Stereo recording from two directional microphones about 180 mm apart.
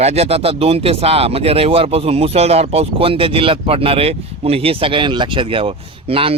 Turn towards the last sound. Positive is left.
turn(degrees=-30)  # may be behind; listen again after turning